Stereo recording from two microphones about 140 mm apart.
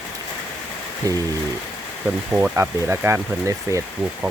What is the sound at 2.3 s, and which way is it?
Speech, 10° right (ahead or behind).